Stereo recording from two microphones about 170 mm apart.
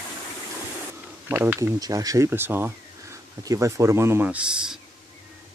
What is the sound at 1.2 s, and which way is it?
Speech, 10° right (ahead or behind).